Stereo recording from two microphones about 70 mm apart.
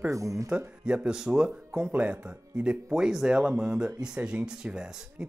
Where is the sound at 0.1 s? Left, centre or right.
Right.